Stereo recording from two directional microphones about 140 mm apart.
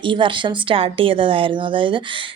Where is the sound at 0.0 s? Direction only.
35° right (ahead or behind).